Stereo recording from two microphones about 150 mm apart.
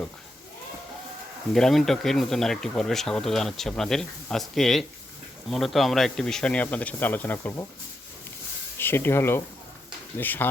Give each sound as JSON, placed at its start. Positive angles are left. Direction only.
{"t": 1.5, "sound": "speech", "side_deg": 5}
{"t": 8.8, "sound": "speech", "side_deg": 15}